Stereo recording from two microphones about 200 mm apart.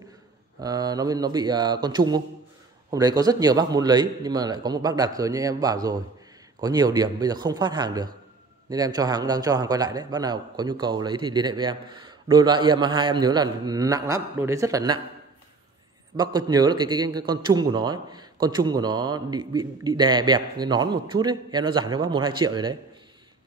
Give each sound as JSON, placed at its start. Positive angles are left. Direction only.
{"t": 0.6, "sound": "a man's voice", "side_deg": -20}
{"t": 16.2, "sound": "a man's voice", "side_deg": -20}